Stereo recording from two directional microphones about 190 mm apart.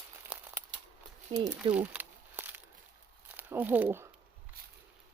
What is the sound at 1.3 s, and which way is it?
Speech, 25° right (ahead or behind).